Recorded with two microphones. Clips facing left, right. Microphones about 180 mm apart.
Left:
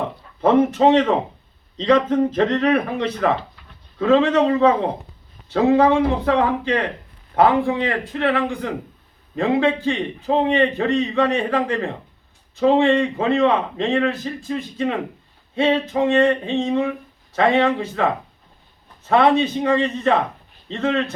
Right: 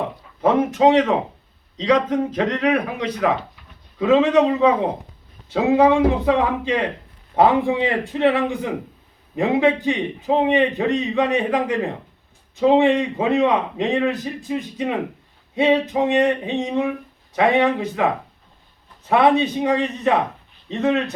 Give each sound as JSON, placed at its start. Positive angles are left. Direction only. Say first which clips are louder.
{"t": 0.4, "sound": "a man's voice", "louder": "left 1 dB", "side_deg": -10}
{"t": 5.5, "sound": "a man's voice", "louder": "left 2 dB", "side_deg": 0}
{"t": 5.8, "sound": "a man's voice", "louder": "right 1 dB", "side_deg": -15}